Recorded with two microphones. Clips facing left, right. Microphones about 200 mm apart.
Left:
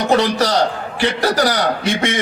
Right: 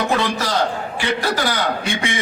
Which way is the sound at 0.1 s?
40° left (ahead or behind).